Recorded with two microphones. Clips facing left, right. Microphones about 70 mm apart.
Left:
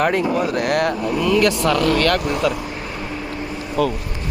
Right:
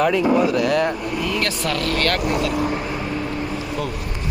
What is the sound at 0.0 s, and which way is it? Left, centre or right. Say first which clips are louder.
Speech: right 1 dB; left.